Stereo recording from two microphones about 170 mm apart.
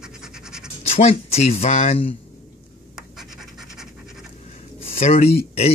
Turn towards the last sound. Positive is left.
turn(degrees=35)  # may be behind; listen again after turning